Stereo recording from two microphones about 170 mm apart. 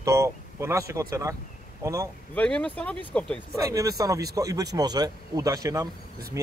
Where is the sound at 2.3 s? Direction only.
5° left (ahead or behind).